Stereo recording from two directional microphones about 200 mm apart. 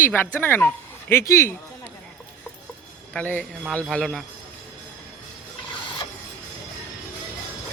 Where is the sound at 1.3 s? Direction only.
10° left (ahead or behind).